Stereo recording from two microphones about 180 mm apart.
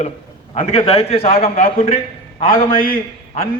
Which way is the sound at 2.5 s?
50° left (ahead or behind).